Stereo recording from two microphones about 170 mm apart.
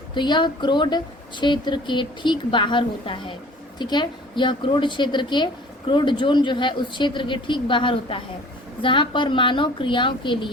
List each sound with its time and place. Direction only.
0.1 s a woman's voice: 25° left (ahead or behind)